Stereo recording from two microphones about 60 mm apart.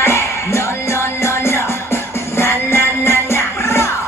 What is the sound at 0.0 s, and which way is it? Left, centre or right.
Music, left.